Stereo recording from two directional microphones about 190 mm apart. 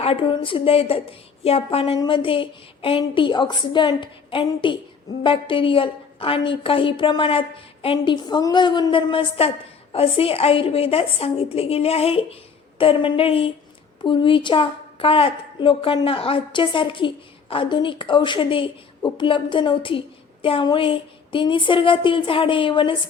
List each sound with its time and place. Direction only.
0.0 s a woman's voice: 30° left (ahead or behind)